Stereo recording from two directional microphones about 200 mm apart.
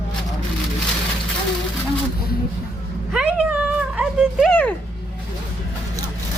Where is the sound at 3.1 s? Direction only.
5° right (ahead or behind).